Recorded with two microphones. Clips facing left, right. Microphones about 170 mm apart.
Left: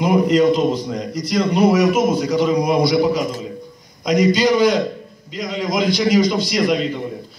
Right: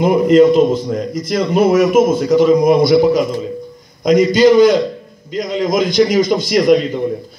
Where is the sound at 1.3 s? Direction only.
50° right (ahead or behind).